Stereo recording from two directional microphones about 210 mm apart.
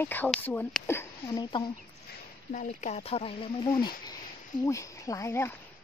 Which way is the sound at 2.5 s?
35° left (ahead or behind).